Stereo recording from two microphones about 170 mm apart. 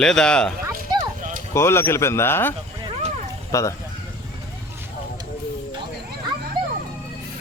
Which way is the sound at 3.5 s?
20° left (ahead or behind).